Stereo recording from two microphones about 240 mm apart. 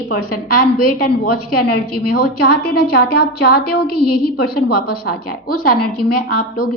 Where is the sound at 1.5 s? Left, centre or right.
Left.